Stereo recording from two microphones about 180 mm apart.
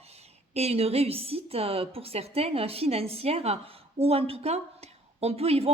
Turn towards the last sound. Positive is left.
turn(degrees=-35)  # may be behind; listen again after turning